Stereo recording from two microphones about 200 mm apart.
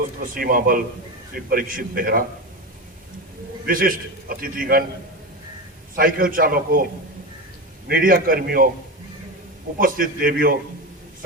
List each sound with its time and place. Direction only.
0.2 s a man's voice: 45° right (ahead or behind)
3.7 s a man's voice: 45° right (ahead or behind)
6.0 s a man's voice: 45° right (ahead or behind)
7.9 s a man's voice: 45° right (ahead or behind)
9.7 s a man's voice: 45° right (ahead or behind)